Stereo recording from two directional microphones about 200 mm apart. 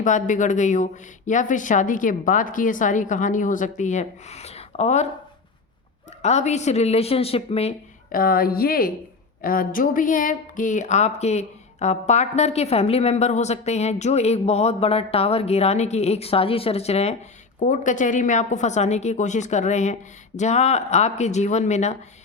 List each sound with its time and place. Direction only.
0.0 s speech: 40° left (ahead or behind)
6.2 s speech: 35° left (ahead or behind)
8.1 s a woman's voice: 45° left (ahead or behind)